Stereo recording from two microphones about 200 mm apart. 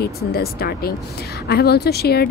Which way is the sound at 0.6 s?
50° left (ahead or behind).